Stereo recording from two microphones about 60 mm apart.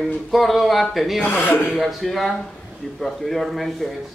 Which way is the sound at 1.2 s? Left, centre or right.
Left.